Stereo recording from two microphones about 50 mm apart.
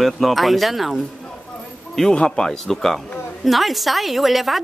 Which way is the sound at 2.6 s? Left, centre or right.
Centre.